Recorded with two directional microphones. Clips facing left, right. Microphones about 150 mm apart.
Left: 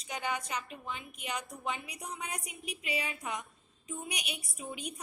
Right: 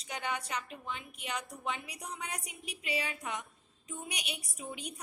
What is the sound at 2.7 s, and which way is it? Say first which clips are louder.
Speech: even; 35° right (ahead or behind).